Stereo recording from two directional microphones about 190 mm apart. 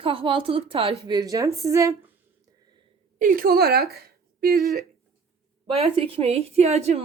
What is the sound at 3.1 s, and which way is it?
A woman's voice, 45° right (ahead or behind).